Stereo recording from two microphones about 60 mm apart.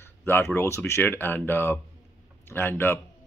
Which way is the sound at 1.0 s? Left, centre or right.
Left.